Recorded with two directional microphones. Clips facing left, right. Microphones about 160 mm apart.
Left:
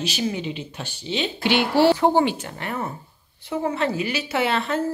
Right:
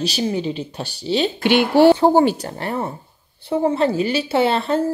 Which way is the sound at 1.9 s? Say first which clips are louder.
Right 4 dB; 40° right (ahead or behind).